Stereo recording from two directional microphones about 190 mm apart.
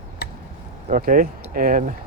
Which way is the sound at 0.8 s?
45° right (ahead or behind).